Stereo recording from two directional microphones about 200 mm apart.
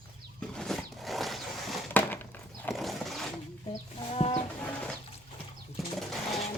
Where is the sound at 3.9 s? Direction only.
30° left (ahead or behind).